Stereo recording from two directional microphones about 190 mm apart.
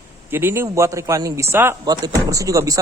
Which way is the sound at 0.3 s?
10° right (ahead or behind).